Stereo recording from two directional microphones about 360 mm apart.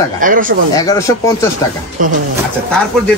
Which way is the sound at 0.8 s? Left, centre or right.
Centre.